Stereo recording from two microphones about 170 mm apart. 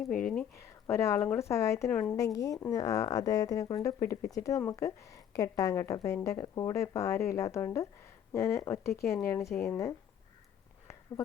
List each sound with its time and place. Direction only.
0.9 s a woman's voice: 15° left (ahead or behind)